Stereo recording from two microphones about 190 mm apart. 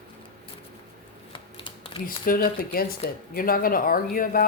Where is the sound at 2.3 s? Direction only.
45° left (ahead or behind).